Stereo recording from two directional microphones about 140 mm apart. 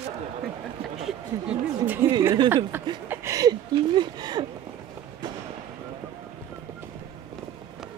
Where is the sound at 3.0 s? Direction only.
15° right (ahead or behind).